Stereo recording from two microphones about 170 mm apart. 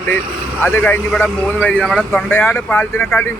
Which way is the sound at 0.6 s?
10° left (ahead or behind).